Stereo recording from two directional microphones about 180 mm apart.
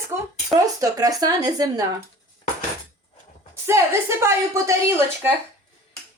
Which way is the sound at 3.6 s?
15° right (ahead or behind).